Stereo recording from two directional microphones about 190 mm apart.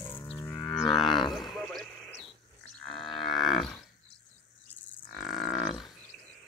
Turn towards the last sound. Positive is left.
turn(degrees=0)  # may be behind; listen again after turning